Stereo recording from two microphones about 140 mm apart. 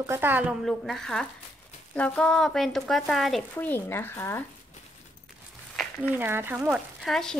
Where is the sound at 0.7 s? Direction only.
5° left (ahead or behind).